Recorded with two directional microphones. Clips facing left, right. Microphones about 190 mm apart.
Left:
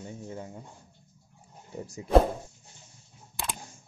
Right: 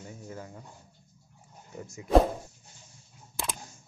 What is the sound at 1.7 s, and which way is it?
Speech, 35° left (ahead or behind).